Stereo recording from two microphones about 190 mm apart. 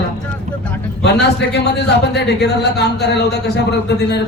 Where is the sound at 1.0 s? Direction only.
60° left (ahead or behind).